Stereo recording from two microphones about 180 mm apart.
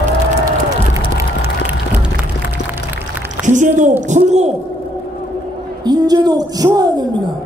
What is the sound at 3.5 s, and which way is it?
A woman's voice, 45° right (ahead or behind).